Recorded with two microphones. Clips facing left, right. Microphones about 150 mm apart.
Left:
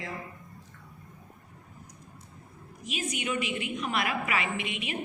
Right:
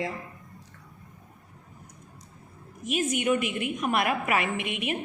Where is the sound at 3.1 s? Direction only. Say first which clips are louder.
Right 5 dB; 50° right (ahead or behind).